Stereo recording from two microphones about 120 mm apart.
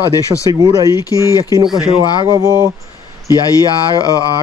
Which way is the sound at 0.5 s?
35° right (ahead or behind).